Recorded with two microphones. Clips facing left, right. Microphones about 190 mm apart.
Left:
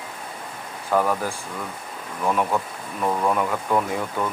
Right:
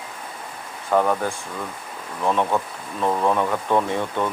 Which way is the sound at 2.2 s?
25° right (ahead or behind).